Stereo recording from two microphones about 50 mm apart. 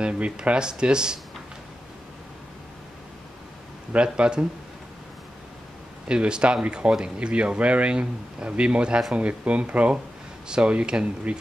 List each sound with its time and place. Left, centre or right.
0.0 s speech: right
3.9 s speech: right
6.0 s speech: centre